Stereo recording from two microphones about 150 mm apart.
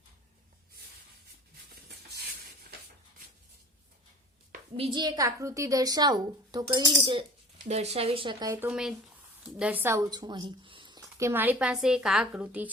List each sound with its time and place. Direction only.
4.8 s a woman's voice: 30° right (ahead or behind)
7.6 s speech: 45° right (ahead or behind); by 8.5 s 30° right (ahead or behind)
8.6 s speech: 5° right (ahead or behind); by 11.0 s 30° right (ahead or behind)
11.2 s speech: 15° right (ahead or behind)